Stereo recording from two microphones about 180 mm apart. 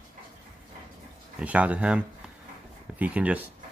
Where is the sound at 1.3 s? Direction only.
5° right (ahead or behind).